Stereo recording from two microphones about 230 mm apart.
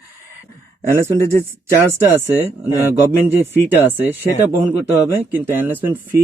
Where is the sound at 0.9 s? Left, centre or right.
Centre.